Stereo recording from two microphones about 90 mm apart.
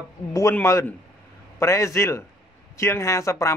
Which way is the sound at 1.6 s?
35° left (ahead or behind).